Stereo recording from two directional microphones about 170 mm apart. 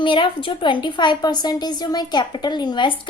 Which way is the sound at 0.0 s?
30° left (ahead or behind).